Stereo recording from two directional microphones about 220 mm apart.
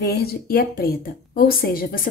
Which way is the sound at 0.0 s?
45° left (ahead or behind).